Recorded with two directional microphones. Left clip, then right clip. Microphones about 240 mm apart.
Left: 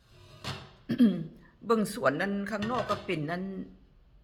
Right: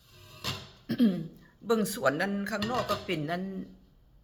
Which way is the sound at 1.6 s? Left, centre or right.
Centre.